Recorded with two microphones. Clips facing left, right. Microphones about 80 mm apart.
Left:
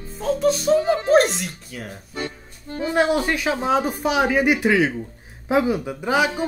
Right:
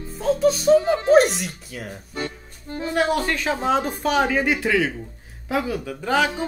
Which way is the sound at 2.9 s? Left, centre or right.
Centre.